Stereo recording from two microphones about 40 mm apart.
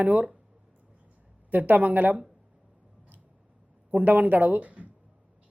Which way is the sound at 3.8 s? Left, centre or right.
Right.